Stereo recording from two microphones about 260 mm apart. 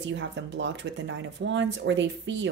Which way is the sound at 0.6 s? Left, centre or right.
Right.